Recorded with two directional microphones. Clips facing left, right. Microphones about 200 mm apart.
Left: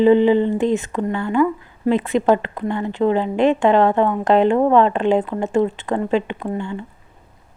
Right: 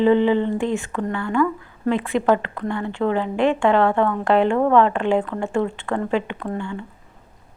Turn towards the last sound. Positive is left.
turn(degrees=20)  # may be behind; listen again after turning